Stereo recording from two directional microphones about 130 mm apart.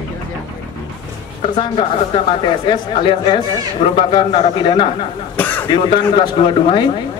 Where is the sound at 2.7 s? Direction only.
40° left (ahead or behind).